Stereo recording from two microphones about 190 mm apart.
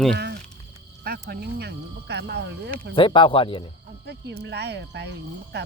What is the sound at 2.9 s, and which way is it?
Speech, 25° left (ahead or behind).